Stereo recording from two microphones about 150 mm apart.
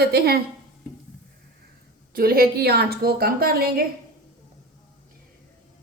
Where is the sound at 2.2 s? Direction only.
85° right.